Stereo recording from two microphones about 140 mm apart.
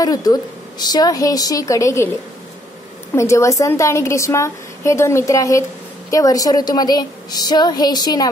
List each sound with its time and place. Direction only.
0.0 s a woman's voice: 25° left (ahead or behind)
3.2 s a woman's voice: 20° left (ahead or behind)